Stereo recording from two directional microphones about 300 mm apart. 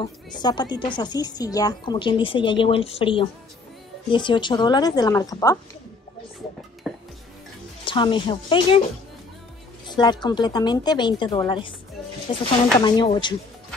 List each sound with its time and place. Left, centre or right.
0.0 s speech: centre
6.8 s music: centre
7.8 s speech: centre
9.9 s speech: centre